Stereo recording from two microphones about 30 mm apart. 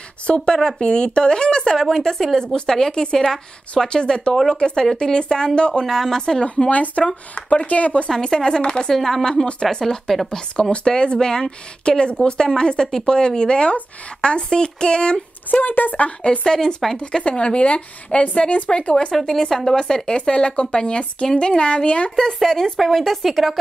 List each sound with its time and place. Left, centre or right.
0.3 s a woman's voice: left
5.9 s speech: centre
6.7 s a woman's voice: left
8.3 s a woman's voice: left
8.9 s speech: centre
9.2 s a woman's voice: left
10.9 s a woman's voice: left
15.6 s a woman's voice: left
16.2 s a woman's voice: left
16.5 s a woman's voice: centre
17.0 s a woman's voice: left
19.2 s speech: centre
19.7 s a woman's voice: left
22.1 s speech: centre